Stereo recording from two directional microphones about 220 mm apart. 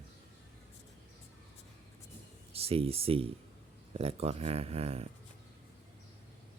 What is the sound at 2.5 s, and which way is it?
Speech, 25° right (ahead or behind).